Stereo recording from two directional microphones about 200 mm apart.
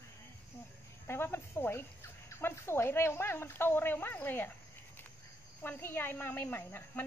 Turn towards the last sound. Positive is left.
turn(degrees=10)  # may be behind; listen again after turning